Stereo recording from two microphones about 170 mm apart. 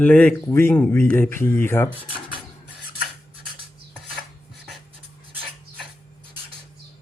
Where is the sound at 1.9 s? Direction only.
30° right (ahead or behind).